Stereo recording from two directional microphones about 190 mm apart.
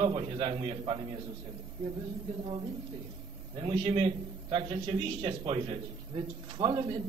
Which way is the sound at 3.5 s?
30° right (ahead or behind).